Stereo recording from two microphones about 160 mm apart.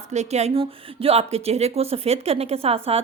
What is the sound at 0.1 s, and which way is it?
A woman's voice, 45° right (ahead or behind).